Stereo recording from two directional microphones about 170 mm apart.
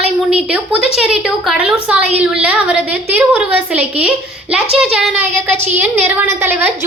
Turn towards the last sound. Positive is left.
turn(degrees=-10)  # may be behind; listen again after turning